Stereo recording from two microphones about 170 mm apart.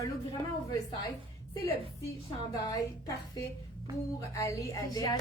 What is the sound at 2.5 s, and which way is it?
A woman's voice, 20° left (ahead or behind).